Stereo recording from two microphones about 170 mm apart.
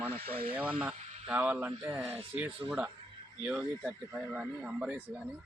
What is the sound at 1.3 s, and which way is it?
Speech, 10° right (ahead or behind).